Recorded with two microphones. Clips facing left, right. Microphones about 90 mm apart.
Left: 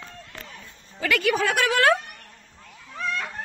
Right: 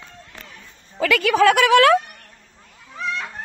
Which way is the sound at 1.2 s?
85° right.